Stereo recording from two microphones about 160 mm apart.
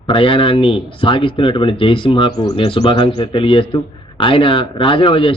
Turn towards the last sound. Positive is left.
turn(degrees=35)  # may be behind; listen again after turning